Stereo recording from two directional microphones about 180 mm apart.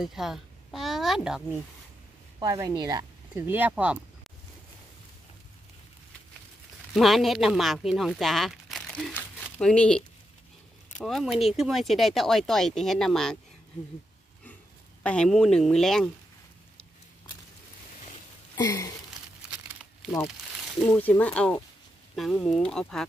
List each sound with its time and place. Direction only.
0.0 s speech: centre (ahead or behind)
2.4 s speech: 20° right (ahead or behind)
6.9 s speech: centre (ahead or behind)
15.0 s speech: 5° left (ahead or behind)
18.6 s a sound: 20° left (ahead or behind)
20.8 s speech: 5° left (ahead or behind)